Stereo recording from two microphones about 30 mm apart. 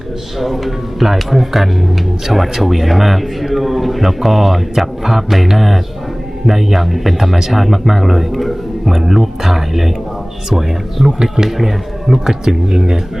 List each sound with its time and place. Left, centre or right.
0.3 s speech: centre